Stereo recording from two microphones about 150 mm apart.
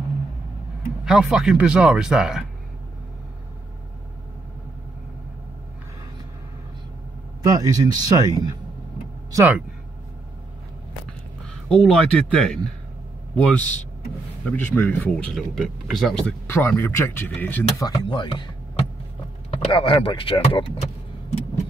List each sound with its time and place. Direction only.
1.0 s speech: 5° right (ahead or behind)
7.4 s speech: 25° right (ahead or behind)
9.3 s speech: 10° right (ahead or behind)
11.7 s speech: 5° left (ahead or behind)
16.4 s speech: 15° left (ahead or behind)
17.7 s speech: 25° left (ahead or behind)
19.6 s speech: 35° left (ahead or behind)